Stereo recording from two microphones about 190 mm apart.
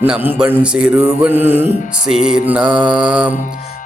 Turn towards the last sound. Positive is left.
turn(degrees=-5)  # may be behind; listen again after turning